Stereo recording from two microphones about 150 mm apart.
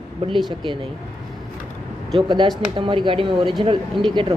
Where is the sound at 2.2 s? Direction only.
30° right (ahead or behind).